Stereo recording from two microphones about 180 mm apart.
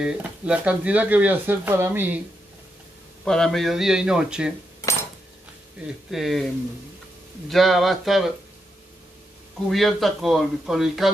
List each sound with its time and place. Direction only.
0.0 s speech: 5° right (ahead or behind)
3.3 s speech: 5° left (ahead or behind)
6.0 s speech: centre (ahead or behind)
7.4 s speech: centre (ahead or behind)
9.7 s speech: centre (ahead or behind)